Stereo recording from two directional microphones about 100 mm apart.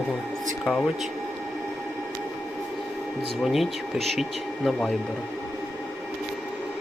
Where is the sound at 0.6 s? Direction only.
10° left (ahead or behind).